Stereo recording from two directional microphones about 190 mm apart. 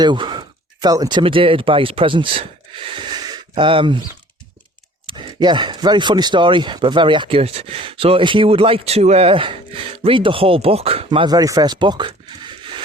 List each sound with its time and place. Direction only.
0.0 s speech: 25° right (ahead or behind)
5.0 s speech: 25° right (ahead or behind)